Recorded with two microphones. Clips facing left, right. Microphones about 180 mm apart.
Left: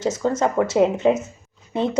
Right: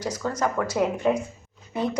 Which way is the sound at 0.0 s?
25° left (ahead or behind).